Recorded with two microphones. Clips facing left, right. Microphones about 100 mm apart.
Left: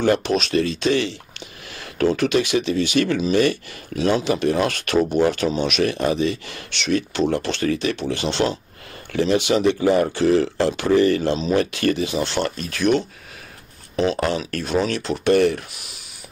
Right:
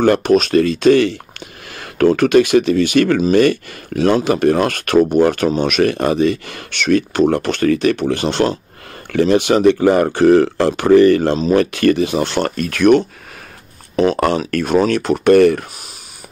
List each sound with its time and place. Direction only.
0.0 s speech: 55° right (ahead or behind)